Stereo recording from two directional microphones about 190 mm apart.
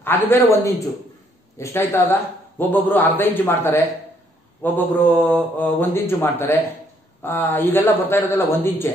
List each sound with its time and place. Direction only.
0.0 s speech: 10° left (ahead or behind)